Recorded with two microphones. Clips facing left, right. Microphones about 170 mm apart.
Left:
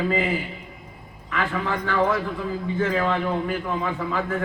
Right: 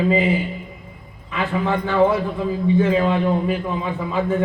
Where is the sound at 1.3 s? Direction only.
20° right (ahead or behind).